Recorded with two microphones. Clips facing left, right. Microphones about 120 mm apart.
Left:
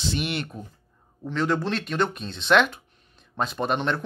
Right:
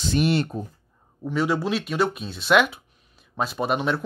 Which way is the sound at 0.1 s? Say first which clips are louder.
Right 7 dB; 35° right (ahead or behind).